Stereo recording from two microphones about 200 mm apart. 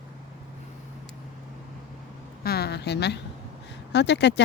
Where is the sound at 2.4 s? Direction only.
50° left (ahead or behind).